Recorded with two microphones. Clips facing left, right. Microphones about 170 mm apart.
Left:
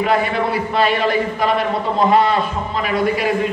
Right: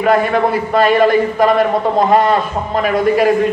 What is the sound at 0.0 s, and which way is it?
A man's voice, 45° right (ahead or behind).